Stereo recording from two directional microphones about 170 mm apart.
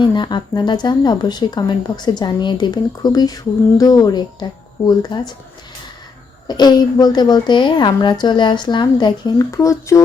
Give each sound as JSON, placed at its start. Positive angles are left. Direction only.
{"t": 0.0, "sound": "speech", "side_deg": 25}
{"t": 6.5, "sound": "speech", "side_deg": 25}